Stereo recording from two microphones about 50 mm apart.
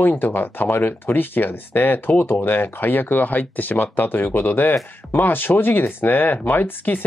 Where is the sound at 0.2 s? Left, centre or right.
Left.